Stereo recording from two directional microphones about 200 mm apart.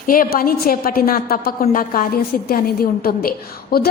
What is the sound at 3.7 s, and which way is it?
Speech, 50° left (ahead or behind).